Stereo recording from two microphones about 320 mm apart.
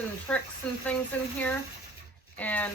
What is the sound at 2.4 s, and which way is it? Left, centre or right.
Speech, centre.